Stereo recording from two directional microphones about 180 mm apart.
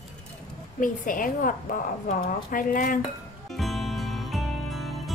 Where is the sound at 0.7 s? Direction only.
50° left (ahead or behind).